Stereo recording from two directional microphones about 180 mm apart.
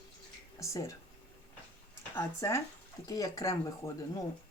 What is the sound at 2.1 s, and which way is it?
Speech, 15° left (ahead or behind).